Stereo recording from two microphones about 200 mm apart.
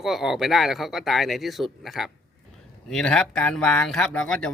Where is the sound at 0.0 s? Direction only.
Centre (ahead or behind).